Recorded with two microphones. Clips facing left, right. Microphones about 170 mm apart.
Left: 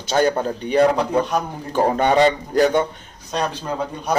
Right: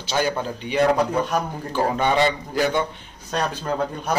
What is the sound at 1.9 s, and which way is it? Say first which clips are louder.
Speech: left 5 dB; 40° left (ahead or behind).